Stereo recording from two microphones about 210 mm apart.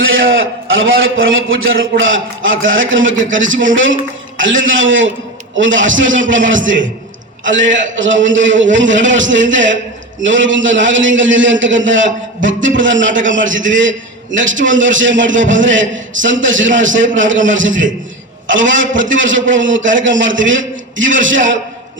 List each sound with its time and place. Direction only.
0.0 s a man's voice: 65° right (ahead or behind)